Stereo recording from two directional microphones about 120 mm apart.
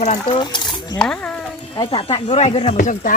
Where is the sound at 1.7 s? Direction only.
45° left (ahead or behind).